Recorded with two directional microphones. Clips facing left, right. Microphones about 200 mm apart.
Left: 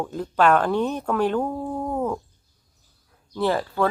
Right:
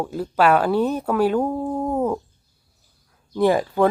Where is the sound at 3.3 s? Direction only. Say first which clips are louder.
Right 5 dB; 15° right (ahead or behind).